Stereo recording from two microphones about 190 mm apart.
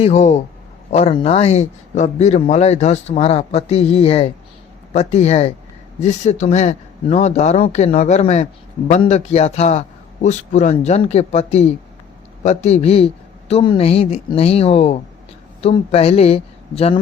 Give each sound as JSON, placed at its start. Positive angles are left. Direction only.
{"t": 0.0, "sound": "a man's voice", "side_deg": 35}